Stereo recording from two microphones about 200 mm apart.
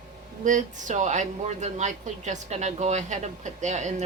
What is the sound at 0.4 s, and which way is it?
A woman's voice, 40° right (ahead or behind).